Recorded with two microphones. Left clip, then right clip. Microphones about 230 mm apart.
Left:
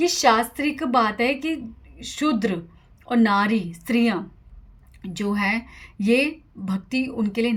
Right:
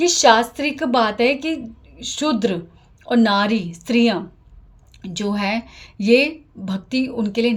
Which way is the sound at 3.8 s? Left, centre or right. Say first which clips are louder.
Right 6 dB; left.